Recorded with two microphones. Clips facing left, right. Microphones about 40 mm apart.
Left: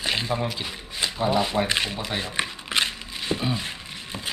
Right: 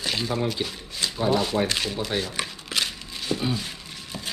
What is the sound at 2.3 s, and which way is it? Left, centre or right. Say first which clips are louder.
Shuffling cards: left 3 dB; left.